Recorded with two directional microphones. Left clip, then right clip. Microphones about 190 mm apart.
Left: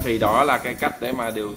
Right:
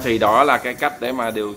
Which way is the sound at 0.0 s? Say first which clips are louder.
Right 4 dB; 15° right (ahead or behind).